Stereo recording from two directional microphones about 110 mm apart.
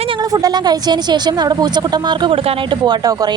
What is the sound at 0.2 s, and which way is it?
A woman's voice, 35° right (ahead or behind).